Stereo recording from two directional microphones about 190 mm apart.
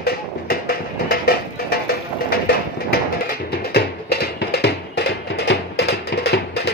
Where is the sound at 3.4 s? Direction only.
55° left (ahead or behind).